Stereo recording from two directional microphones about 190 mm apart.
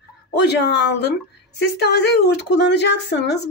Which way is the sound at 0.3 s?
60° left (ahead or behind).